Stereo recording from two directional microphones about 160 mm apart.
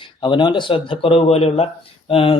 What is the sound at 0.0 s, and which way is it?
Speech, 30° left (ahead or behind).